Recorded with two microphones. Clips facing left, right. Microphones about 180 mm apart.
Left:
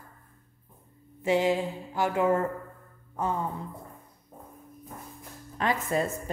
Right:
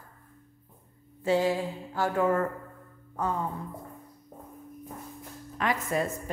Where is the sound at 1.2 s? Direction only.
20° left (ahead or behind).